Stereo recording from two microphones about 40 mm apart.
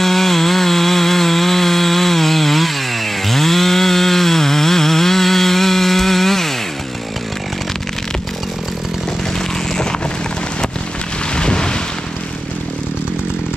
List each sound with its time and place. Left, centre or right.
0.0 s chainsaw: centre
11.3 s boat: left